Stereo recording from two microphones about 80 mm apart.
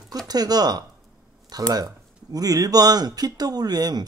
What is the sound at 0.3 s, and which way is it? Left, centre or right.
Speech, right.